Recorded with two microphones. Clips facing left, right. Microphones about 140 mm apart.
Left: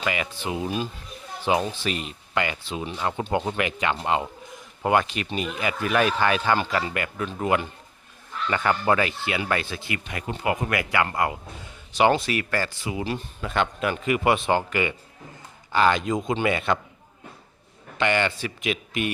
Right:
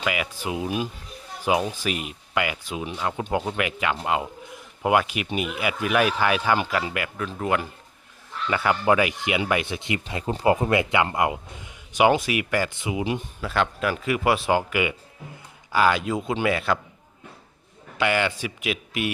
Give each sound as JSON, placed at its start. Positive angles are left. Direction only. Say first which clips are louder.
{"t": 0.0, "sound": "speech", "louder": "even", "side_deg": -5}
{"t": 8.4, "sound": "speech", "louder": "right 1 dB", "side_deg": -10}
{"t": 13.4, "sound": "speech", "louder": "even", "side_deg": 0}
{"t": 17.9, "sound": "speech", "louder": "even", "side_deg": -5}